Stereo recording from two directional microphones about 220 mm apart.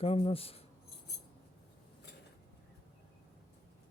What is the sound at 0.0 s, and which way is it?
Speech, 25° left (ahead or behind).